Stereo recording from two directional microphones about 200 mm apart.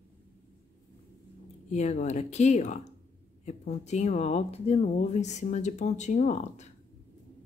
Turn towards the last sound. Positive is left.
turn(degrees=35)  # may be behind; listen again after turning